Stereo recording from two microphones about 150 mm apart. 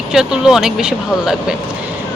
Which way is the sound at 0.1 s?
5° right (ahead or behind).